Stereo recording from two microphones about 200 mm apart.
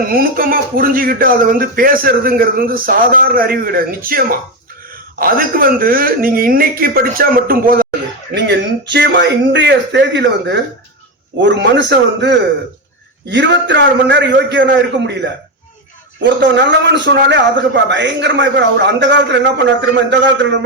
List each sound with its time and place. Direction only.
0.0 s speech: 45° right (ahead or behind)
8.4 s a man's voice: 60° right (ahead or behind)